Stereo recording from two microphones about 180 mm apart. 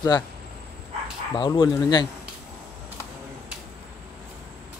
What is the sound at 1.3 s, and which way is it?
Speech, 25° left (ahead or behind).